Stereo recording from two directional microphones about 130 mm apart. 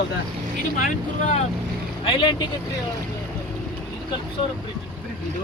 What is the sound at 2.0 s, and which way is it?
Speech, 40° left (ahead or behind).